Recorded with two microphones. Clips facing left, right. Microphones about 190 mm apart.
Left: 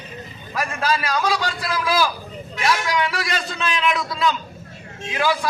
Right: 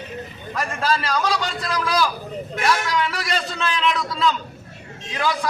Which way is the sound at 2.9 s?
10° left (ahead or behind).